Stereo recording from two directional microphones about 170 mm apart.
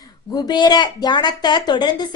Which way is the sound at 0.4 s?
25° left (ahead or behind).